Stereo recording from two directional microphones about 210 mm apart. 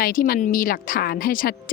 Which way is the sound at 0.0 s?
40° left (ahead or behind).